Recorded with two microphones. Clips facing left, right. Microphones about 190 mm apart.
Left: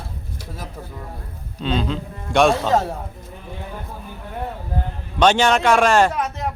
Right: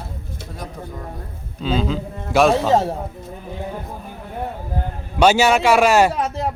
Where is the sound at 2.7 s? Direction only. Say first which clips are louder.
Right 2 dB; 25° right (ahead or behind).